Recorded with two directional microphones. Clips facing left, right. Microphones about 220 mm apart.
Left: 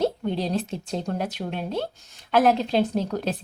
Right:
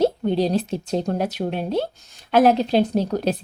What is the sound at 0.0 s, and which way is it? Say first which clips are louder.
A woman's voice: right 5 dB; 35° right (ahead or behind).